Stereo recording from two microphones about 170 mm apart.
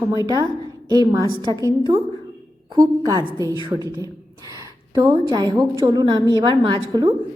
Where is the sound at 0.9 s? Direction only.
20° right (ahead or behind).